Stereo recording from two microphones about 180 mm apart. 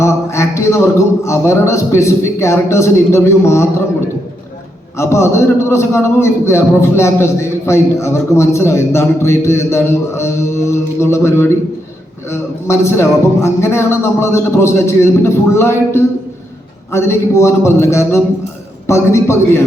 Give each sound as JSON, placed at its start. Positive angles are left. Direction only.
{"t": 0.0, "sound": "a man's voice", "side_deg": 15}
{"t": 4.9, "sound": "a man's voice", "side_deg": 15}